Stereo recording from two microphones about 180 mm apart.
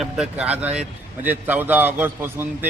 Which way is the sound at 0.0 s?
5° right (ahead or behind).